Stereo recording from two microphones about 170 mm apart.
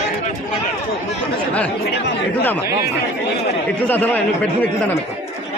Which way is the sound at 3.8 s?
10° left (ahead or behind).